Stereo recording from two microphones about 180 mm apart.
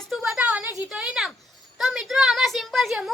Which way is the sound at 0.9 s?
5° right (ahead or behind).